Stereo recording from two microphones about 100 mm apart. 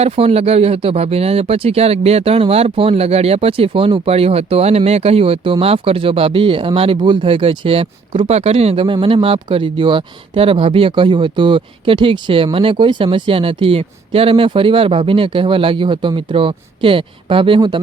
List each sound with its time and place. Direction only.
0.0 s speech: 90° right; by 17.7 s 55° right (ahead or behind)